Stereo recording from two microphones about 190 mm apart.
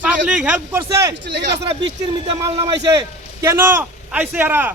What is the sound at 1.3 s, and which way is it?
Speech, 65° right (ahead or behind).